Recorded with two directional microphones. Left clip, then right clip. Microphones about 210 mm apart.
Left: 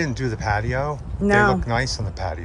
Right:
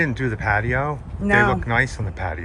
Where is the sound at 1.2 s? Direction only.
50° left (ahead or behind).